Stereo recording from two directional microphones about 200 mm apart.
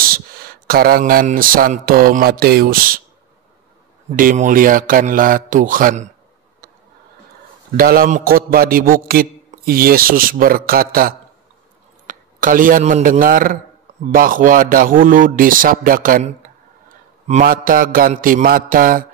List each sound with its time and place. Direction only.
0.0 s a man's voice: 50° right (ahead or behind)
4.2 s a man's voice: 45° right (ahead or behind)
7.7 s a man's voice: 50° right (ahead or behind)
17.3 s a man's voice: 45° right (ahead or behind)